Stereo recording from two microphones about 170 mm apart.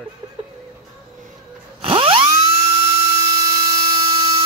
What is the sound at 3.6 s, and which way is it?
Dental drill, 25° right (ahead or behind).